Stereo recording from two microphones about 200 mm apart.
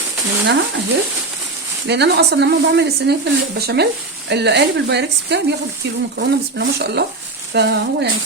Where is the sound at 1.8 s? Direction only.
55° right (ahead or behind).